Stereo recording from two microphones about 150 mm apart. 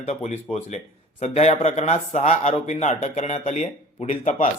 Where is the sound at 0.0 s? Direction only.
50° left (ahead or behind).